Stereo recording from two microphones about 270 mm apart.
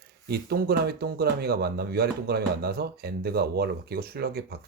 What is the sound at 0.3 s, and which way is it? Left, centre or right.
Speech, right.